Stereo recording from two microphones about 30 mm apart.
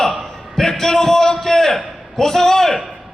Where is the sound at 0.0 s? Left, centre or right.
Centre.